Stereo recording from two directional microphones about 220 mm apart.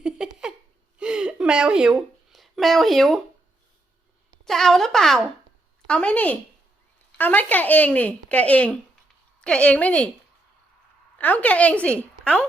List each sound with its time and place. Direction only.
0.0 s a sound: 5° right (ahead or behind)
4.4 s speech: centre (ahead or behind)
11.2 s speech: 5° left (ahead or behind)